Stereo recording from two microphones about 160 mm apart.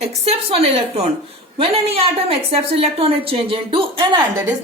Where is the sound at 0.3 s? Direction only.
40° right (ahead or behind).